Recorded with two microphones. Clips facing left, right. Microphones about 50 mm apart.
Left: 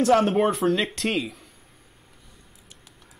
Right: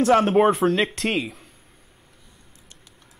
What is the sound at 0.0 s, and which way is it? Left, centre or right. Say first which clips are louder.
Speech: right 3 dB; centre.